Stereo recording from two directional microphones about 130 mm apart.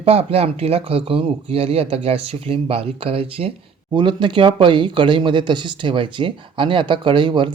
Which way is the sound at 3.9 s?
35° right (ahead or behind).